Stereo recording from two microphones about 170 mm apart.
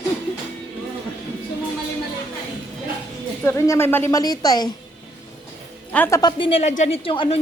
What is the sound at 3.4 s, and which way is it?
A woman's voice, 15° left (ahead or behind).